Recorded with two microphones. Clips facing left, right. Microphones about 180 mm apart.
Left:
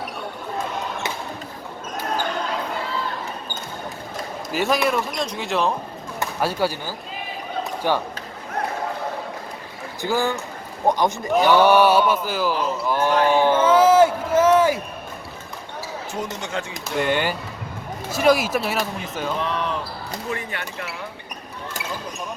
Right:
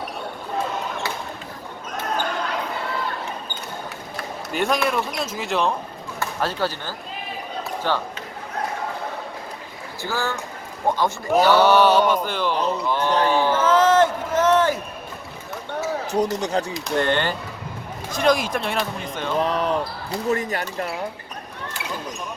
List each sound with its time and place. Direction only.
4.5 s speech: centre (ahead or behind)
6.1 s speech: 10° left (ahead or behind)
7.6 s basketball bounce: 15° left (ahead or behind)
10.0 s mantra: 15° left (ahead or behind)
12.9 s a sound: 10° left (ahead or behind)
16.1 s speech: 35° right (ahead or behind)
17.0 s mantra: 10° left (ahead or behind)
18.1 s speech: 5° left (ahead or behind)
19.4 s speech: 40° right (ahead or behind)